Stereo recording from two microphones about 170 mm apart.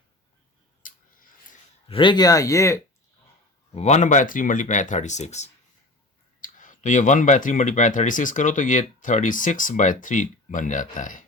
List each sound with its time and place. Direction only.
0.8 s a sound: 50° left (ahead or behind)
1.9 s speech: 30° left (ahead or behind)
3.8 s speech: 40° left (ahead or behind)